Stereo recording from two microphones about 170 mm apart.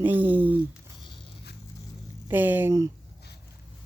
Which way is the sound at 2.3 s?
10° right (ahead or behind).